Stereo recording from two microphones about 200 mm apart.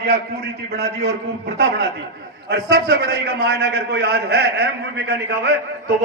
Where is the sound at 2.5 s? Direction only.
60° right (ahead or behind).